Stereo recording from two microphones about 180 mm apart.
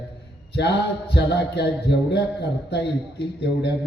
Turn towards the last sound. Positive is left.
turn(degrees=70)  # may be behind; listen again after turning